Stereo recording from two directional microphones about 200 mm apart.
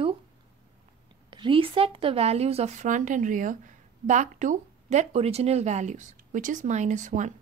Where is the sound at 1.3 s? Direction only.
25° right (ahead or behind).